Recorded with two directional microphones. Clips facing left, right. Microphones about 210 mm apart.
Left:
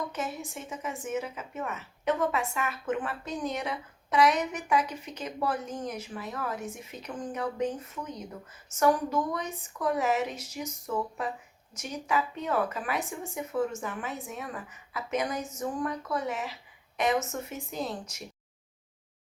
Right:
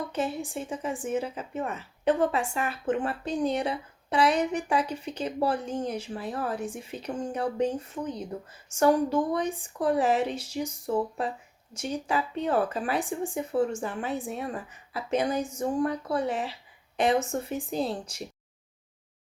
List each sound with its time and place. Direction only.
0.1 s speech: 30° right (ahead or behind)